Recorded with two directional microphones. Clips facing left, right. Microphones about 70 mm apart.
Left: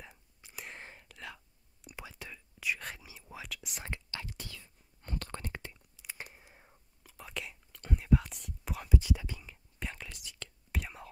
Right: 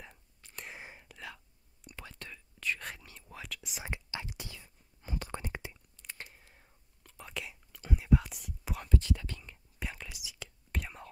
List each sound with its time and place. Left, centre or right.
0.0 s whispering: centre
0.7 s whispering: centre
3.8 s whispering: centre
4.6 s whispering: centre
5.9 s a sound: centre
7.0 s whispering: centre
8.8 s whispering: centre